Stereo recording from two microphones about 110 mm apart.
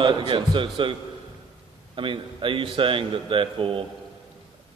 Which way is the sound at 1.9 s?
50° right (ahead or behind).